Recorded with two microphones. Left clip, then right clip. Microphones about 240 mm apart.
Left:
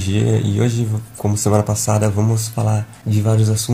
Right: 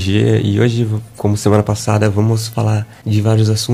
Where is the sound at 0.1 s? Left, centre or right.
Right.